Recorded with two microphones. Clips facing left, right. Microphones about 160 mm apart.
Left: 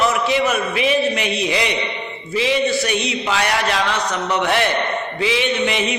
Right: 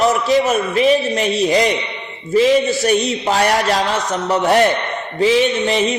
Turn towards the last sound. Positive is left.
turn(degrees=-40)  # may be behind; listen again after turning